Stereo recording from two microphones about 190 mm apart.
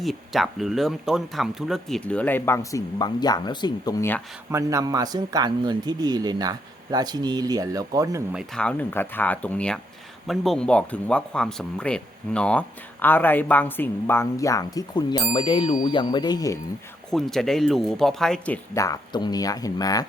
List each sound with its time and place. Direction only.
0.0 s speech: centre (ahead or behind); by 4.2 s 15° left (ahead or behind)
4.5 s speech: 15° right (ahead or behind)
8.3 s speech: centre (ahead or behind); by 16.6 s 20° left (ahead or behind)
17.1 s speech: centre (ahead or behind); by 20.1 s 20° left (ahead or behind)